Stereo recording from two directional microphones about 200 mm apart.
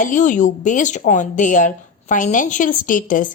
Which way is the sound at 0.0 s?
40° left (ahead or behind).